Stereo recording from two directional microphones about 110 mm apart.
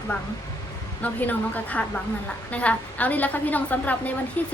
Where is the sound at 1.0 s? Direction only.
15° left (ahead or behind).